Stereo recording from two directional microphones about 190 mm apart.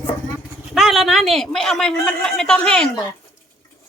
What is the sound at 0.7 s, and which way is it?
A man's voice, centre (ahead or behind).